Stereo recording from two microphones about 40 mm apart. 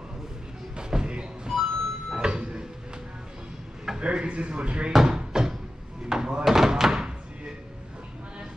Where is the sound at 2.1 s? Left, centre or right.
Centre.